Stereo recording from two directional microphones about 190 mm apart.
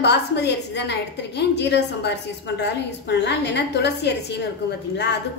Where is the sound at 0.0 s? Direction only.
65° left (ahead or behind).